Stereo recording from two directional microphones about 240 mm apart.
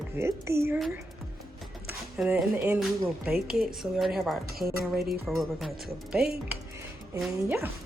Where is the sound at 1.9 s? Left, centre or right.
Centre.